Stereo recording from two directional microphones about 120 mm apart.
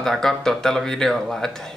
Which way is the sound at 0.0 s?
5° left (ahead or behind).